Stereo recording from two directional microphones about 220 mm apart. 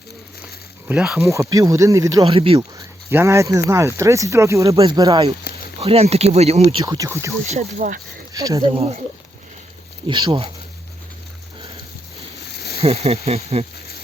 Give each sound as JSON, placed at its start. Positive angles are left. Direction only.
{"t": 0.9, "sound": "speech", "side_deg": -5}
{"t": 1.3, "sound": "speech", "side_deg": -15}
{"t": 2.2, "sound": "speech", "side_deg": -25}
{"t": 7.4, "sound": "speech", "side_deg": -30}
{"t": 8.3, "sound": "speech", "side_deg": -15}
{"t": 8.7, "sound": "speech", "side_deg": -30}
{"t": 10.1, "sound": "speech", "side_deg": -20}
{"t": 12.7, "sound": "speech", "side_deg": -30}